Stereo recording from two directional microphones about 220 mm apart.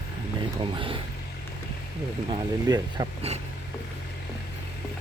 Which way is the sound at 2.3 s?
20° right (ahead or behind).